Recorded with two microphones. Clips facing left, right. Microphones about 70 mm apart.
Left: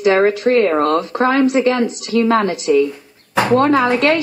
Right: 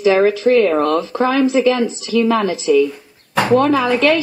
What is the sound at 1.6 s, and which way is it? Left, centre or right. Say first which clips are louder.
Speech: right 1 dB; left.